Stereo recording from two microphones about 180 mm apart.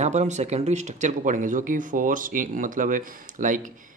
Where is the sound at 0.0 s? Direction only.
40° right (ahead or behind).